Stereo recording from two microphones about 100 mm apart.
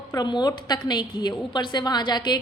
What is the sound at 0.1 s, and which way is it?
A woman's voice, 45° left (ahead or behind).